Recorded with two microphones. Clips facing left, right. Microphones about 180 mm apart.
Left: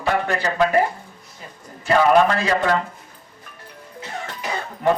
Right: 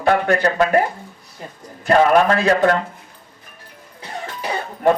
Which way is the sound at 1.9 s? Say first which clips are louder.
Right 2 dB; 55° right (ahead or behind).